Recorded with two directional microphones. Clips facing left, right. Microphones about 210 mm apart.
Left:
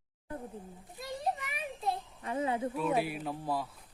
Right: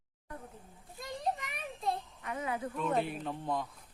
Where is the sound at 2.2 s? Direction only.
30° left (ahead or behind).